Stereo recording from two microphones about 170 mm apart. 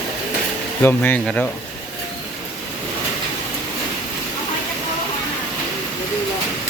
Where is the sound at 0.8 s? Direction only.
10° left (ahead or behind).